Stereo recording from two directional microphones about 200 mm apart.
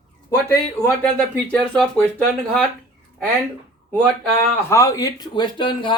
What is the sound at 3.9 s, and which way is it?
Speech, 10° left (ahead or behind).